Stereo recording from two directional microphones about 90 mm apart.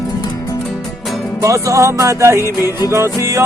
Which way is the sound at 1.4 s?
35° right (ahead or behind).